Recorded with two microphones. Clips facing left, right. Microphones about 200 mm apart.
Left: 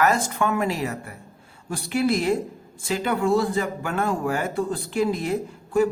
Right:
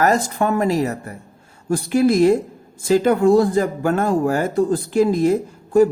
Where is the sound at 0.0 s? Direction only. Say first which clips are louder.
Right 4 dB; 40° right (ahead or behind).